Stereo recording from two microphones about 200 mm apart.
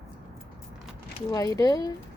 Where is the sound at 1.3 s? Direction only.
15° left (ahead or behind).